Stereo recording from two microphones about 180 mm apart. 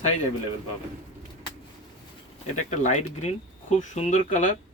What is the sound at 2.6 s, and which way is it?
Speech, 40° left (ahead or behind).